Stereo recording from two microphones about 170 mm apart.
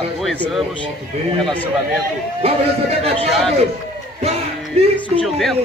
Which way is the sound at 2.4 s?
35° right (ahead or behind).